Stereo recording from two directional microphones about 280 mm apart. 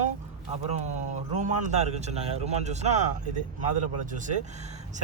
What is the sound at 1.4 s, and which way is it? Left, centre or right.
Speech, right.